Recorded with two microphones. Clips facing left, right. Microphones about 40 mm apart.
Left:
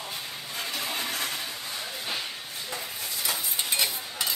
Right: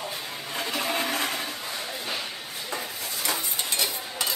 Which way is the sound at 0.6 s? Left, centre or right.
Right.